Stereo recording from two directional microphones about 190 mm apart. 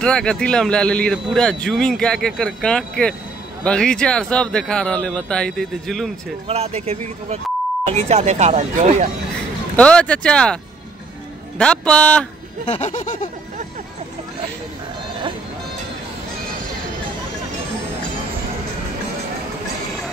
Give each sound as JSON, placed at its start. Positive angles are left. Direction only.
{"t": 0.0, "sound": "speech", "side_deg": 5}
{"t": 6.4, "sound": "speech", "side_deg": -35}
{"t": 9.8, "sound": "speech", "side_deg": 5}
{"t": 12.8, "sound": "a sound", "side_deg": 40}